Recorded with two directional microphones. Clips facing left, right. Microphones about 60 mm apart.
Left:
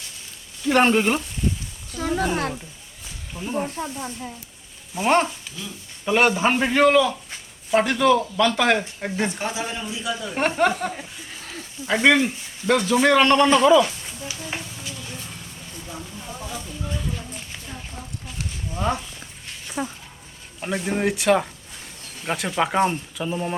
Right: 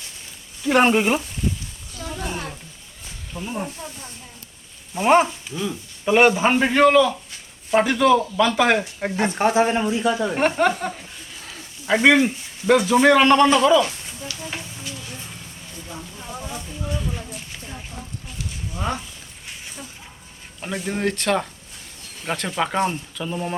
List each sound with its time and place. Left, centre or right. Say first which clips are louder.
0.6 s a man's voice: right 1 dB; centre
2.2 s speech: left 4 dB; left
3.3 s a man's voice: left 2 dB; centre
4.9 s a man's voice: right 3 dB; centre
8.8 s a man's voice: right 2 dB; centre
9.2 s speech: right 10 dB; right
10.3 s a man's voice: right 1 dB; centre
11.3 s a sound: left 3 dB; centre
11.9 s a man's voice: right 2 dB; centre
16.6 s a sound: right 1 dB; centre
18.0 s a sound: even; right
18.8 s a man's voice: left 2 dB; centre
19.8 s speech: left 16 dB; left
20.8 s a man's voice: left 2 dB; centre